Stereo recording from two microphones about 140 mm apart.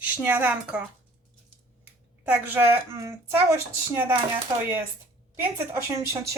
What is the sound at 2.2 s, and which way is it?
A woman's voice, 10° right (ahead or behind).